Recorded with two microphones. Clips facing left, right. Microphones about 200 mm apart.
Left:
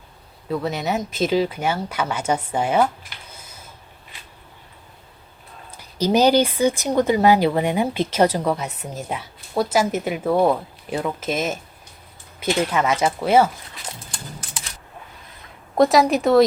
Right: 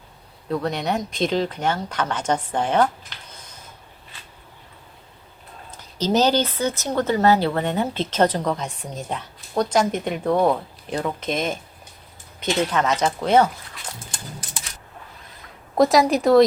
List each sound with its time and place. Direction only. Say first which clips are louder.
0.4 s speech: even; 5° left (ahead or behind)
5.7 s speech: left 2 dB; 10° left (ahead or behind)
15.8 s a woman's voice: left 1 dB; centre (ahead or behind)